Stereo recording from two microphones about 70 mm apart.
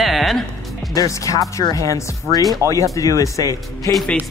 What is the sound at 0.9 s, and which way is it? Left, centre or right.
Speech, left.